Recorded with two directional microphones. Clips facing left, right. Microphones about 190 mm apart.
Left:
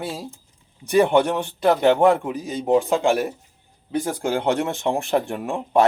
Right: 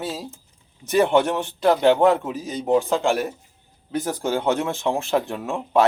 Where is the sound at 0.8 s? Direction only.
15° left (ahead or behind).